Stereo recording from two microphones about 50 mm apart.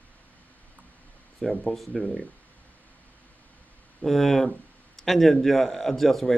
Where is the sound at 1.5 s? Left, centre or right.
Centre.